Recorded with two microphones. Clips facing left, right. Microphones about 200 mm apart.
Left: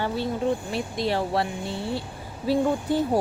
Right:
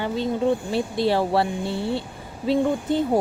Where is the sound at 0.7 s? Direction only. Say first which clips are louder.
Right 5 dB; 30° right (ahead or behind).